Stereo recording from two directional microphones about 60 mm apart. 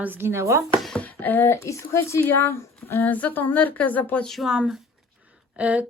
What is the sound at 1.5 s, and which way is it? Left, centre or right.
Speech, left.